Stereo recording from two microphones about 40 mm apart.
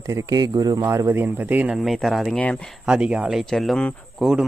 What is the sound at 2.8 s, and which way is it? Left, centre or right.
Speech, centre.